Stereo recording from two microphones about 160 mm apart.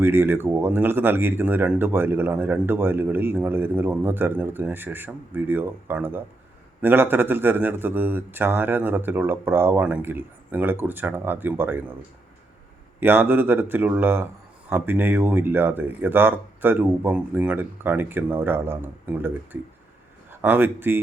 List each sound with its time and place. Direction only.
0.0 s speech: 15° right (ahead or behind)
13.0 s speech: 10° right (ahead or behind)
20.3 s speech: 10° right (ahead or behind)